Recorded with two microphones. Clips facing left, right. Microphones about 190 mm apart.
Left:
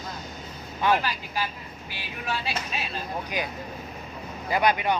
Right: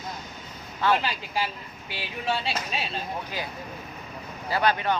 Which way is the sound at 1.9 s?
25° right (ahead or behind).